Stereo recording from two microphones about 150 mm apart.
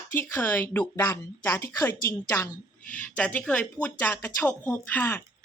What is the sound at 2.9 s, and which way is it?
A woman's voice, 10° left (ahead or behind).